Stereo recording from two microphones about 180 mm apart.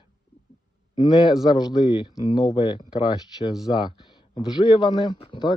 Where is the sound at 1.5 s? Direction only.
30° left (ahead or behind).